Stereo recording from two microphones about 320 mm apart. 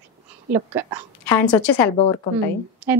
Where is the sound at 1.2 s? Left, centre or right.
Centre.